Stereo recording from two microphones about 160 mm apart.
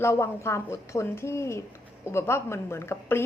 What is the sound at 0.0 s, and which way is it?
A woman's voice, 15° left (ahead or behind).